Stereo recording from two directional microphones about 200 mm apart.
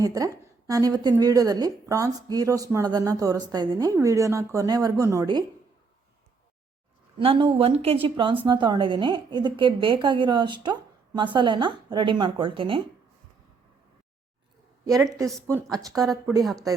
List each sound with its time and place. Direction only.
0.0 s a woman's voice: 15° right (ahead or behind)
7.2 s speech: 25° right (ahead or behind)
15.9 s a woman's voice: 10° right (ahead or behind)